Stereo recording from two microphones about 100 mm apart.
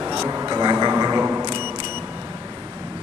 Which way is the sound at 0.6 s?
45° right (ahead or behind).